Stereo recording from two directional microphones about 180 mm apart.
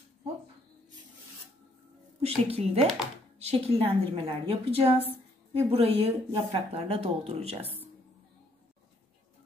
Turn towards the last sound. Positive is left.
turn(degrees=-35)  # may be behind; listen again after turning